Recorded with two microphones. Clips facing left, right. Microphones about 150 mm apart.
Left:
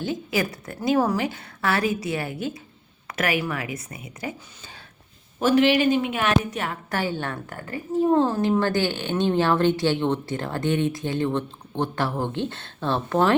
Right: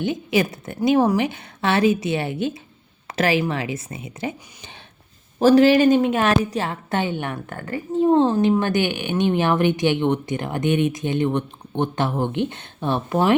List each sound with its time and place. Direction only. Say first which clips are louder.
0.0 s a woman's voice: right 5 dB; 20° right (ahead or behind)
5.4 s a woman's voice: right 5 dB; 35° right (ahead or behind); by 13.3 s 15° right (ahead or behind)